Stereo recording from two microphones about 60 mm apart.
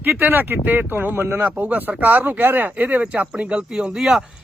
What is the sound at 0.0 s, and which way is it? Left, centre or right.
Speech, right.